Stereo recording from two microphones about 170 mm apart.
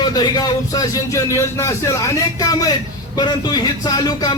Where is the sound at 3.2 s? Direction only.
25° left (ahead or behind).